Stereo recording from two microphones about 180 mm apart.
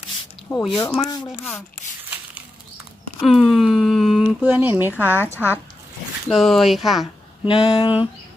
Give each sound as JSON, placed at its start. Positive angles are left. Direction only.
{"t": 0.7, "sound": "speech", "side_deg": 20}
{"t": 3.2, "sound": "speech", "side_deg": 0}
{"t": 5.2, "sound": "speech", "side_deg": 10}
{"t": 6.2, "sound": "speech", "side_deg": 0}
{"t": 7.4, "sound": "speech", "side_deg": 20}